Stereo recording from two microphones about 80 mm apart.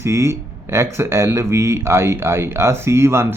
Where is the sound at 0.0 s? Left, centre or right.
Right.